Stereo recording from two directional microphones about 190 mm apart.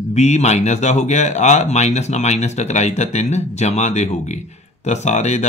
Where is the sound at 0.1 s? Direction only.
35° left (ahead or behind).